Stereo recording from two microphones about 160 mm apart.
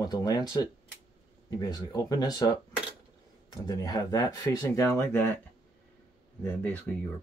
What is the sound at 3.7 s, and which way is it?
Speech, 25° left (ahead or behind).